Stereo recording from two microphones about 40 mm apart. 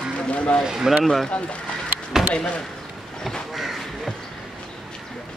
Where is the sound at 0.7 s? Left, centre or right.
Centre.